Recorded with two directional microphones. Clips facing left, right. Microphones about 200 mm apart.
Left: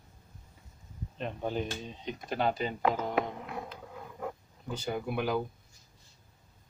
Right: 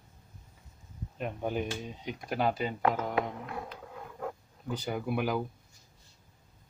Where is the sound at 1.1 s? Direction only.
10° right (ahead or behind).